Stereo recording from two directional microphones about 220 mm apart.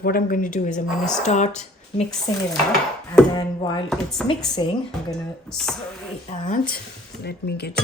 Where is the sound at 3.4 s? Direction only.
20° left (ahead or behind).